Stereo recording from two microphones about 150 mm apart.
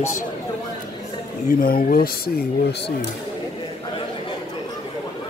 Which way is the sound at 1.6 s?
75° left (ahead or behind).